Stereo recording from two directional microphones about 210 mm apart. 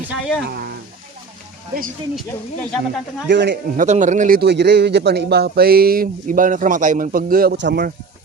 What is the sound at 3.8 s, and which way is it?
A man's voice, 35° right (ahead or behind).